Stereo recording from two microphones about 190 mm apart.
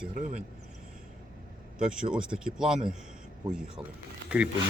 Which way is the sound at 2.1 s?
5° right (ahead or behind).